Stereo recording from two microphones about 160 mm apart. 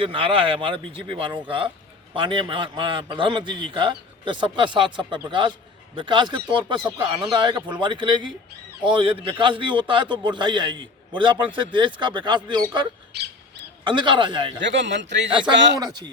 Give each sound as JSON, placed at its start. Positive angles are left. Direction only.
{"t": 0.0, "sound": "a man's voice", "side_deg": -35}
{"t": 13.1, "sound": "speech", "side_deg": -90}
{"t": 13.8, "sound": "a man's voice", "side_deg": -30}
{"t": 14.6, "sound": "speech", "side_deg": -90}
{"t": 15.3, "sound": "a man's voice", "side_deg": -30}
{"t": 15.5, "sound": "speech", "side_deg": -90}